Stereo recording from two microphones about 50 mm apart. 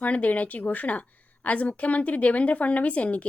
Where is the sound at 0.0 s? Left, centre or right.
Left.